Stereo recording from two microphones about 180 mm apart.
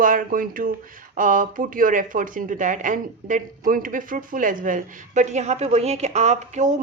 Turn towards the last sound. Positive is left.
turn(degrees=-40)  # may be behind; listen again after turning